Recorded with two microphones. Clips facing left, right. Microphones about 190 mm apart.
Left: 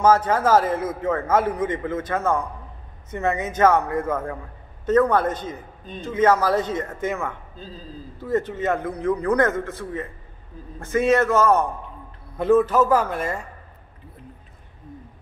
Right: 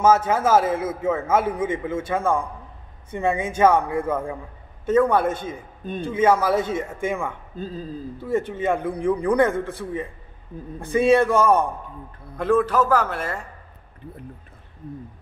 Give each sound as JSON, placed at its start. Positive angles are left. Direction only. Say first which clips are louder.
{"t": 0.0, "sound": "a man's voice", "louder": "even", "side_deg": -5}
{"t": 7.5, "sound": "speech", "louder": "right 7 dB", "side_deg": -55}
{"t": 8.3, "sound": "a man's voice", "louder": "even", "side_deg": -10}
{"t": 12.4, "sound": "a man's voice", "louder": "left 2 dB", "side_deg": 5}